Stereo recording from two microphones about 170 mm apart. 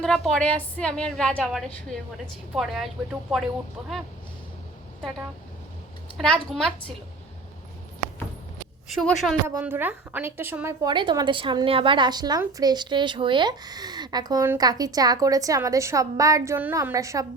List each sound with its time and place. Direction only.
0.0 s a woman's voice: 5° left (ahead or behind)
6.1 s a woman's voice: 5° left (ahead or behind)
9.0 s a woman's voice: centre (ahead or behind)
9.5 s a woman's voice: 10° right (ahead or behind)
10.8 s a woman's voice: 25° right (ahead or behind)